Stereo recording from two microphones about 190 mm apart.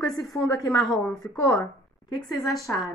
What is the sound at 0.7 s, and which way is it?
Speech, centre (ahead or behind).